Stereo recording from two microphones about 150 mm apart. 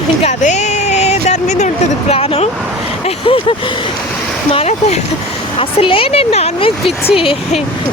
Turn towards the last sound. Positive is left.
turn(degrees=35)  # may be behind; listen again after turning